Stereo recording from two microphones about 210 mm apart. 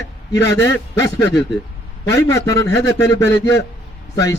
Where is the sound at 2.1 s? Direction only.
15° left (ahead or behind).